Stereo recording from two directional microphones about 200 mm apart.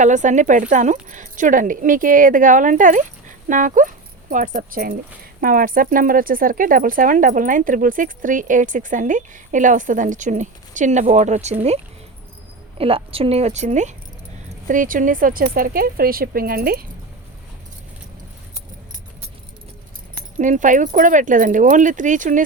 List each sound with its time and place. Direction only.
0.0 s speech: 40° right (ahead or behind)
12.8 s speech: 30° right (ahead or behind); by 16.8 s 50° right (ahead or behind)
20.4 s speech: 40° right (ahead or behind)